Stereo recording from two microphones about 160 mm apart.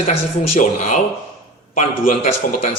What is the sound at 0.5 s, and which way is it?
A man's voice, 50° left (ahead or behind).